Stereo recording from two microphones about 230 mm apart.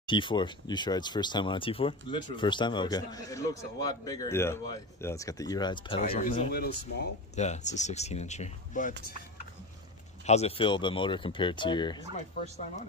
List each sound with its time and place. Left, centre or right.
0.0 s speech: left
6.5 s speech: left
7.3 s speech: left
10.2 s speech: left
12.4 s speech: left